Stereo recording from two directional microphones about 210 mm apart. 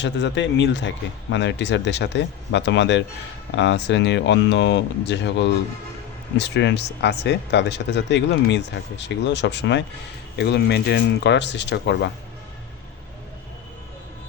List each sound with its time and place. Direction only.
0.0 s speech: 60° left (ahead or behind)